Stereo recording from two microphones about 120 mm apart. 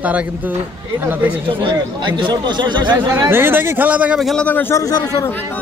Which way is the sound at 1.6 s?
40° right (ahead or behind).